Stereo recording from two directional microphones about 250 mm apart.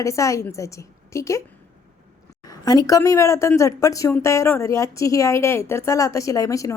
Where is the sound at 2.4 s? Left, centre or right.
Centre.